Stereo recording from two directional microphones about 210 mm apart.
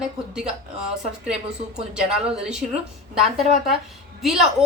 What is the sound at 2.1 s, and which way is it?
A woman's voice, 5° right (ahead or behind).